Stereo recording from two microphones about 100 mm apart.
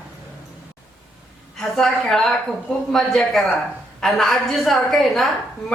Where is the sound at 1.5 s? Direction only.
5° left (ahead or behind).